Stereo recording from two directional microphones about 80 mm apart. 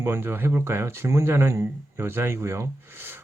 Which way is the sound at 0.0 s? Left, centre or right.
Right.